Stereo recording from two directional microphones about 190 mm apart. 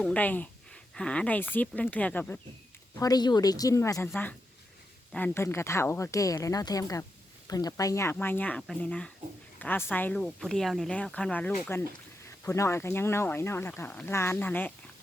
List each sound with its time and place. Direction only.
0.0 s speech: 5° left (ahead or behind)
3.0 s a woman's voice: 20° left (ahead or behind)